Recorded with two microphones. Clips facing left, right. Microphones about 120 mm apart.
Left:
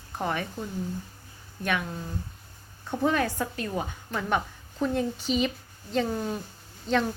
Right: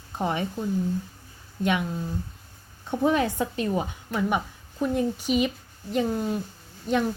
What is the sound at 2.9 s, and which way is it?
A woman's voice, 20° right (ahead or behind).